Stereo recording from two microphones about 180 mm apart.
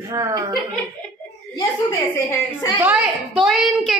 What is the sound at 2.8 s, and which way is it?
A woman's voice, 5° right (ahead or behind).